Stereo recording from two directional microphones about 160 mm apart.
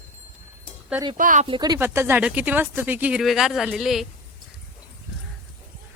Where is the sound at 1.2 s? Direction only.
55° right (ahead or behind).